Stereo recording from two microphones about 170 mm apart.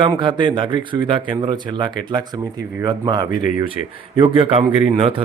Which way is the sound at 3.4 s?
55° left (ahead or behind).